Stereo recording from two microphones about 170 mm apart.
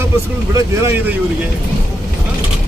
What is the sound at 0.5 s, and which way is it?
Speech, 15° right (ahead or behind).